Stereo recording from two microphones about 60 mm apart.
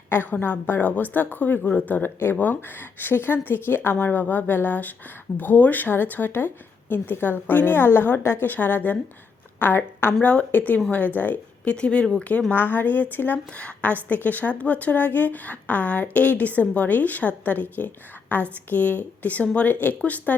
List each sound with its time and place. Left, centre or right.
0.1 s speech: left
0.4 s speech: left
8.5 s a woman's voice: left
10.2 s a woman's voice: left
11.7 s speech: centre
12.5 s a woman's voice: left